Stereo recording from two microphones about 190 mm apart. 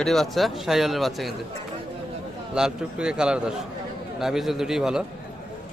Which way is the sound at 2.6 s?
5° right (ahead or behind).